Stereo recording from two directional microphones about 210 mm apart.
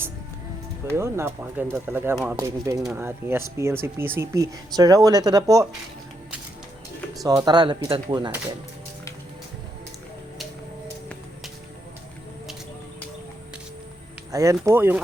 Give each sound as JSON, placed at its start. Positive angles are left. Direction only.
{"t": 0.9, "sound": "speech", "side_deg": -10}
{"t": 7.3, "sound": "speech", "side_deg": -20}
{"t": 14.3, "sound": "speech", "side_deg": -15}